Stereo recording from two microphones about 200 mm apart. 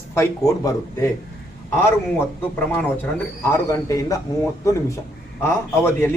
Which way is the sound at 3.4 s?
15° left (ahead or behind).